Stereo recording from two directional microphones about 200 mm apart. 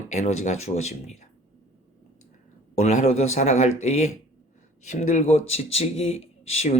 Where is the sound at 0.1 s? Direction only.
35° left (ahead or behind).